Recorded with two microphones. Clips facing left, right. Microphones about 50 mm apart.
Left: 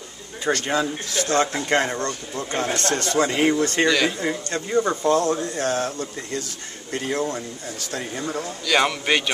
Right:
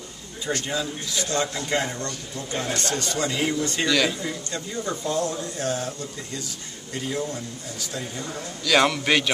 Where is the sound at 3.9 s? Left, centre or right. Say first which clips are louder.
Left 1 dB; centre.